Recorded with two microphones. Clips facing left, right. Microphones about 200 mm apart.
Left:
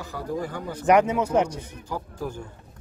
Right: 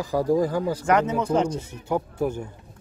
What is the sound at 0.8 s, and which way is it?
Speech, 15° left (ahead or behind).